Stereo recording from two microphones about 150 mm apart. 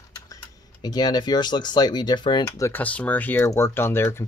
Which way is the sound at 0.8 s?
25° left (ahead or behind).